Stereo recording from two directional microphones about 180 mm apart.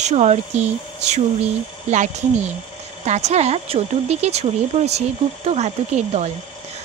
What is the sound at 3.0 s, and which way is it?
A woman's voice, 40° right (ahead or behind).